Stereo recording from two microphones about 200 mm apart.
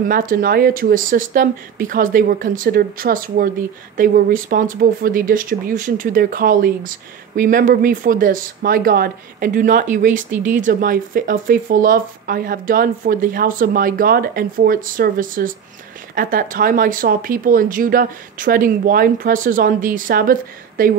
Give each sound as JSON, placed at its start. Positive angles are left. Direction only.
{"t": 0.1, "sound": "speech", "side_deg": -45}